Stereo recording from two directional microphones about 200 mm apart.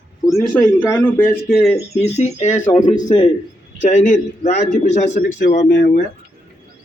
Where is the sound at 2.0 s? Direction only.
35° left (ahead or behind).